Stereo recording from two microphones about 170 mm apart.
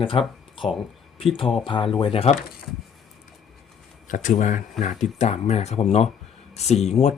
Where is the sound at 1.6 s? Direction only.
30° left (ahead or behind).